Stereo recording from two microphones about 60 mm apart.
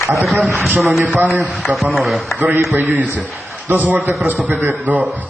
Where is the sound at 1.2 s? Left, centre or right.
Right.